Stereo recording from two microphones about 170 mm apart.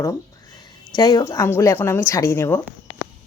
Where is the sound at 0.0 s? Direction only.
20° left (ahead or behind).